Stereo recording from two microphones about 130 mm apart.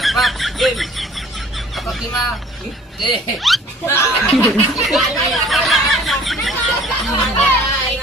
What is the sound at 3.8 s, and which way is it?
Speech, 20° left (ahead or behind).